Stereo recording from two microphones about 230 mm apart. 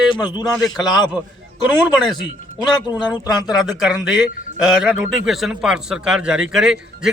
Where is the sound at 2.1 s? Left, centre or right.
Centre.